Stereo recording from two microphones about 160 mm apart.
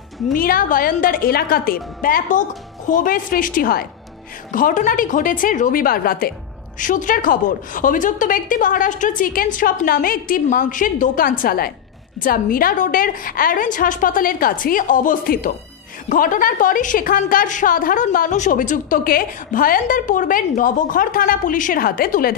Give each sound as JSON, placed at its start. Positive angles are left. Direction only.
{"t": 0.3, "sound": "a woman's voice", "side_deg": 65}
{"t": 6.8, "sound": "a woman's voice", "side_deg": 55}